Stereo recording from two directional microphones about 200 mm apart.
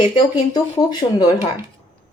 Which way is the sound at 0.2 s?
20° left (ahead or behind).